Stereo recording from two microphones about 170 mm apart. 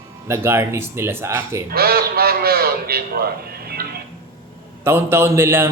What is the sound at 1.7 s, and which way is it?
A man's voice, 65° right (ahead or behind).